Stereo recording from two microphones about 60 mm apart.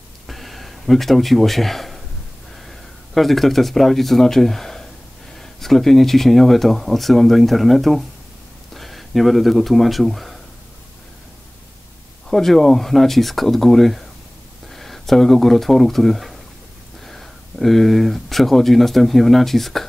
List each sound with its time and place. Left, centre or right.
0.3 s a sound: centre
3.2 s speech: centre
12.3 s speech: centre